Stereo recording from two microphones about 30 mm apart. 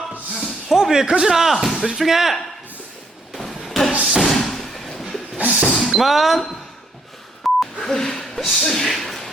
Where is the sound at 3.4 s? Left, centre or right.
Centre.